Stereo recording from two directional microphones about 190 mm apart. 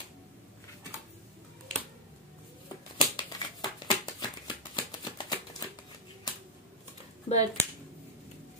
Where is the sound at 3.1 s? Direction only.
25° left (ahead or behind).